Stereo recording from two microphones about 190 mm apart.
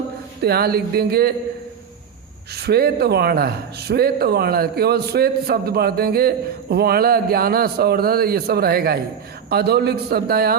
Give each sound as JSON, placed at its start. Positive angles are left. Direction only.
{"t": 0.4, "sound": "a man's voice", "side_deg": -55}
{"t": 2.6, "sound": "a man's voice", "side_deg": -55}